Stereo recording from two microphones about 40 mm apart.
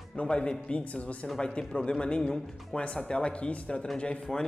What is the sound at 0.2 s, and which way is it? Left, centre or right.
Speech, left.